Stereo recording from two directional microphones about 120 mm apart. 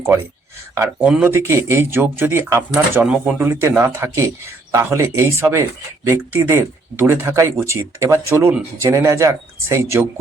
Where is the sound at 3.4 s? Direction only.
20° right (ahead or behind).